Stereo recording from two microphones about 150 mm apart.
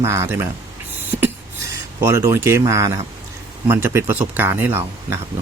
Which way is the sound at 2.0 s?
20° right (ahead or behind).